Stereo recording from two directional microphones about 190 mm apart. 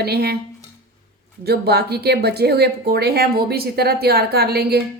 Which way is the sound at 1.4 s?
60° right (ahead or behind).